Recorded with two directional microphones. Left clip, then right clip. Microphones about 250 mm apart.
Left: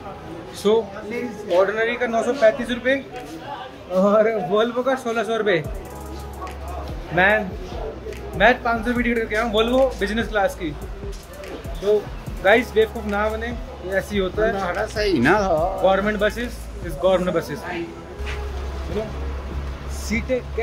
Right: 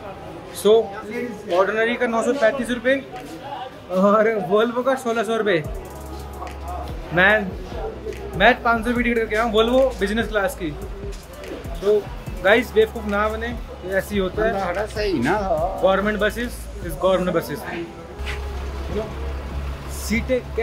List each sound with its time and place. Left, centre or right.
0.6 s a man's voice: centre
7.2 s a man's voice: centre
12.4 s speech: centre
15.2 s speech: left
15.8 s speech: centre
20.1 s a man's voice: centre